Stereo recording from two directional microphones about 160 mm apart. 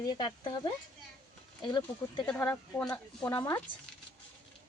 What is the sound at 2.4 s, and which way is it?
A woman's voice, 10° left (ahead or behind).